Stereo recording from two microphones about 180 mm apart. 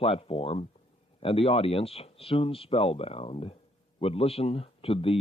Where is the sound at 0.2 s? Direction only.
30° left (ahead or behind).